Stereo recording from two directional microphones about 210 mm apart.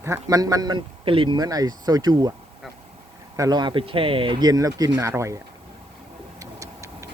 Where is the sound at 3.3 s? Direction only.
20° right (ahead or behind).